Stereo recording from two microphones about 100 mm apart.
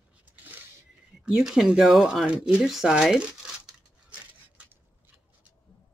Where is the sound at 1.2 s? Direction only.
5° right (ahead or behind).